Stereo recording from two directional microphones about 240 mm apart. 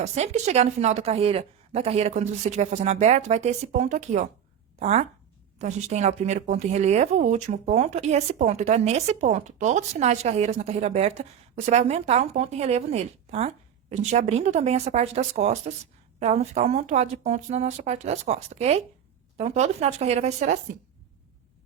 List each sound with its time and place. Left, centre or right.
0.0 s speech: right